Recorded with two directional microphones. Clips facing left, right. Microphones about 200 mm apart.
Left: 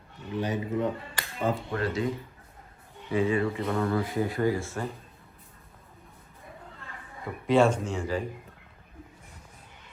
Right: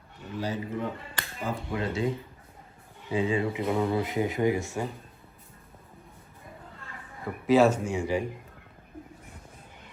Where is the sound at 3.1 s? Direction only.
20° right (ahead or behind).